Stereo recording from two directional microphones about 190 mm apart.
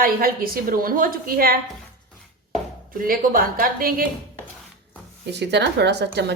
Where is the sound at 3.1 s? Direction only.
50° right (ahead or behind).